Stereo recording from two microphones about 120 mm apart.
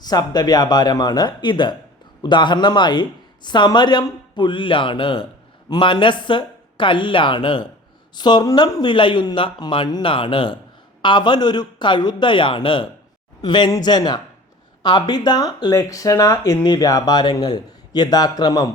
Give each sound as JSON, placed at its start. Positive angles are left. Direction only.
{"t": 0.0, "sound": "speech", "side_deg": 35}